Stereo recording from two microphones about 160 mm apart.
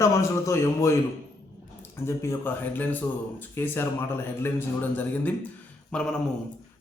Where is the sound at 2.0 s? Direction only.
15° left (ahead or behind).